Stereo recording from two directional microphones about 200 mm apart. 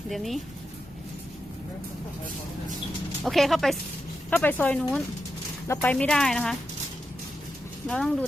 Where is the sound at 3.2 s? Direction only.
Centre (ahead or behind).